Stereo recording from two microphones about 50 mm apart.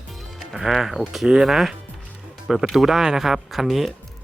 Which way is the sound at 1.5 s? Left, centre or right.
Centre.